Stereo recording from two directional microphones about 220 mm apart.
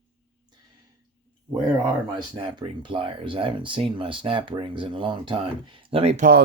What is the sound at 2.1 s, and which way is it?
Speech, 20° right (ahead or behind).